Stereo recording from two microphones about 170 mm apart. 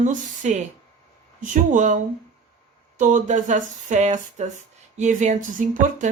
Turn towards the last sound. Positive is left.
turn(degrees=-50)  # may be behind; listen again after turning